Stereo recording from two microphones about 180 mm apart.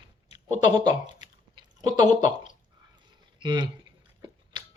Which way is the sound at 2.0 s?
20° right (ahead or behind).